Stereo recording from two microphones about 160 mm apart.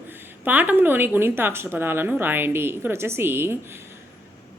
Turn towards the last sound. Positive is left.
turn(degrees=-15)  # may be behind; listen again after turning